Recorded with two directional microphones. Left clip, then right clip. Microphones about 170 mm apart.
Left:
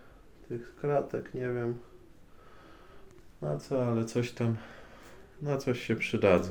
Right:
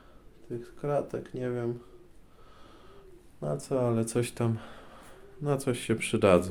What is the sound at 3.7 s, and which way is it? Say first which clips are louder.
Speech: right 2 dB; 45° right (ahead or behind).